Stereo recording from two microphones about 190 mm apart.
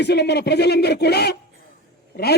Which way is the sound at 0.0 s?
60° left (ahead or behind).